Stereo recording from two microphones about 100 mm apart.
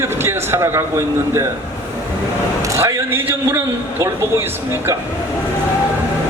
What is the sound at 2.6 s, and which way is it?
A man's voice, 30° right (ahead or behind).